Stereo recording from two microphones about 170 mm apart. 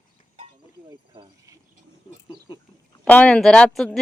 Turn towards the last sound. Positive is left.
turn(degrees=5)  # may be behind; listen again after turning